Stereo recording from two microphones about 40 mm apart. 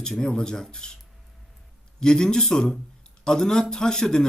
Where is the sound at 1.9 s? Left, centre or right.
Centre.